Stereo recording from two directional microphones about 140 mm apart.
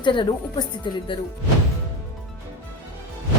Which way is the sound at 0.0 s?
35° left (ahead or behind).